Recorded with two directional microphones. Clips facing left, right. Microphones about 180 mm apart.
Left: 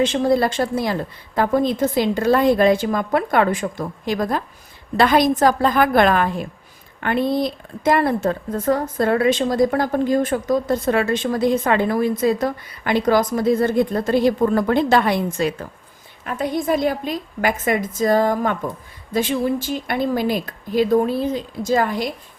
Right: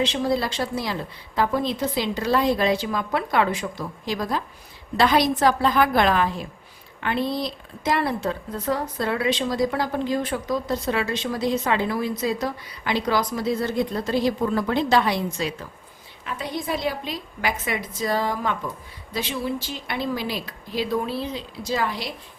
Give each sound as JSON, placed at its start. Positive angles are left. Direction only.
{"t": 0.0, "sound": "speech", "side_deg": 50}